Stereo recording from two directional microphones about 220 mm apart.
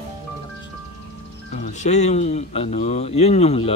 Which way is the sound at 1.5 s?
30° left (ahead or behind).